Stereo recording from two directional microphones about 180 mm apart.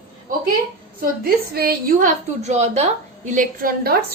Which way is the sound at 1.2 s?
55° right (ahead or behind).